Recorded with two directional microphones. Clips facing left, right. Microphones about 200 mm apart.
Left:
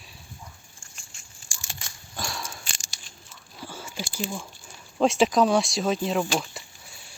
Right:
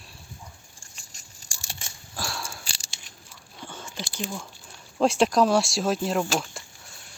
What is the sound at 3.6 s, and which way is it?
Biting, 5° left (ahead or behind).